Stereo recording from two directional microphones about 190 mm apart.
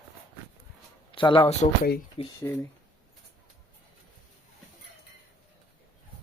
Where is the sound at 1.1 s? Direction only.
25° left (ahead or behind).